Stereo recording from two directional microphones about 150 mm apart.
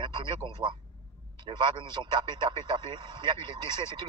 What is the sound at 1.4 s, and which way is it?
A man's voice, 30° right (ahead or behind).